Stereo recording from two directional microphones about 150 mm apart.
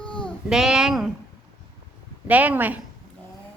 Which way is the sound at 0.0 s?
5° left (ahead or behind).